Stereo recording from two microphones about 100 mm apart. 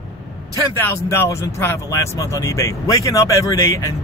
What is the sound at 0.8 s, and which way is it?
Speech, 25° left (ahead or behind).